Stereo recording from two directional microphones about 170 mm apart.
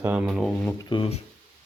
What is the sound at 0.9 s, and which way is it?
Speech, 35° left (ahead or behind).